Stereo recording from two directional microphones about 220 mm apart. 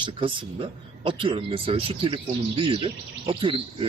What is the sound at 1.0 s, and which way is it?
Speech, 25° right (ahead or behind).